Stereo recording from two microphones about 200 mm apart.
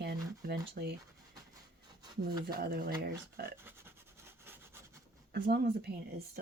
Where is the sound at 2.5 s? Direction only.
50° right (ahead or behind).